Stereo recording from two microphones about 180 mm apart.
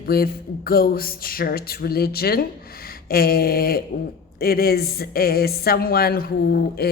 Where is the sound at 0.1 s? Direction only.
55° left (ahead or behind).